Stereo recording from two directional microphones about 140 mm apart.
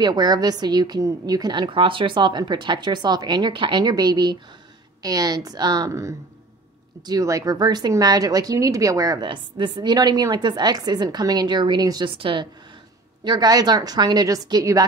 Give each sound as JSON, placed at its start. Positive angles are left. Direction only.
{"t": 0.0, "sound": "a woman's voice", "side_deg": -30}